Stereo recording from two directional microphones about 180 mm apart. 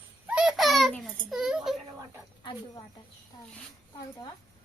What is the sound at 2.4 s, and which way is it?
Speech, 25° left (ahead or behind).